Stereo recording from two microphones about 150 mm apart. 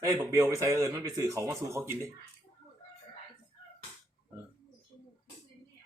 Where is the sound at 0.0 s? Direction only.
20° right (ahead or behind).